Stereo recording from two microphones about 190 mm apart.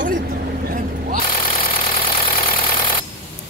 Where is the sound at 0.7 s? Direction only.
40° right (ahead or behind).